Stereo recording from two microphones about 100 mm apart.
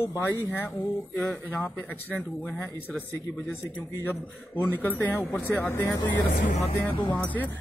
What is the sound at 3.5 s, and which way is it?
Speech, 20° left (ahead or behind).